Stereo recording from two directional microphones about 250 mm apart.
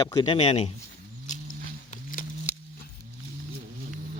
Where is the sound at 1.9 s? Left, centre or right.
Left.